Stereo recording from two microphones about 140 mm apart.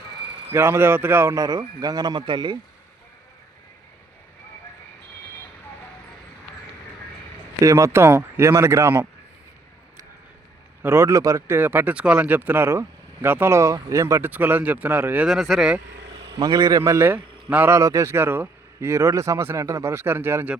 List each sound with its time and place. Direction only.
0.5 s a man's voice: 15° right (ahead or behind); by 2.6 s 35° right (ahead or behind)
7.6 s a man's voice: 20° right (ahead or behind)
10.8 s speech: 20° right (ahead or behind); by 15.8 s 5° right (ahead or behind)
16.0 s a man's voice: 30° right (ahead or behind); by 20.6 s 15° right (ahead or behind)